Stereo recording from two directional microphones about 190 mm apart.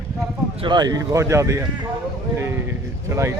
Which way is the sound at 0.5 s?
25° right (ahead or behind).